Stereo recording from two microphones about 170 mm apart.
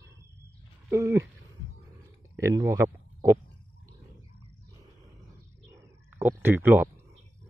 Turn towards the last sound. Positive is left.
turn(degrees=-10)  # may be behind; listen again after turning